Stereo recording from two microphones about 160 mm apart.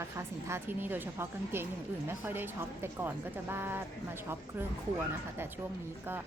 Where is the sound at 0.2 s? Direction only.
15° right (ahead or behind).